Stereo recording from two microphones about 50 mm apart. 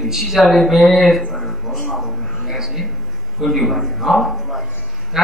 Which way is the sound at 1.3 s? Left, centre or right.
Centre.